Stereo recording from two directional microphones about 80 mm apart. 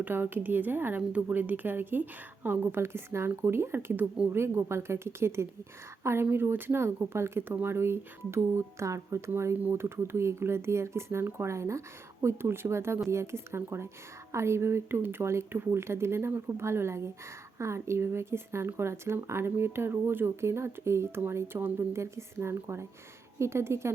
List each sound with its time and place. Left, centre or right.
0.0 s speech: right